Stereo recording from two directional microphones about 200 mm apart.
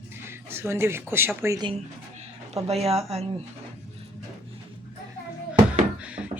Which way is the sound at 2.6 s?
30° right (ahead or behind).